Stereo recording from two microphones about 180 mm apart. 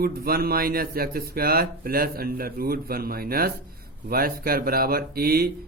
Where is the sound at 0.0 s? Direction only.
60° right (ahead or behind).